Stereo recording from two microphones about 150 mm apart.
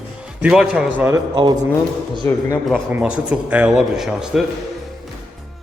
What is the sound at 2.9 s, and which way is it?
Speech, 5° right (ahead or behind).